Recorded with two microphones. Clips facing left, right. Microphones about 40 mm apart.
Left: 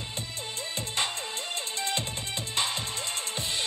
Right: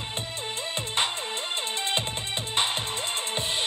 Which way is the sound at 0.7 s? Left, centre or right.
Right.